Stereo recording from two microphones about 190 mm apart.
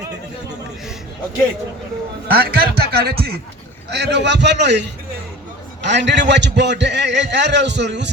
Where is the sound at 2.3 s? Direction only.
55° right (ahead or behind).